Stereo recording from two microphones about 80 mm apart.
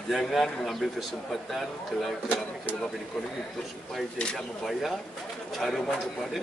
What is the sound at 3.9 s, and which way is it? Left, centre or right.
A man's voice, centre.